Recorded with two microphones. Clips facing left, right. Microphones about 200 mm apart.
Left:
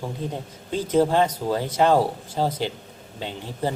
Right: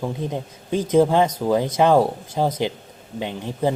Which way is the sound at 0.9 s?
10° right (ahead or behind).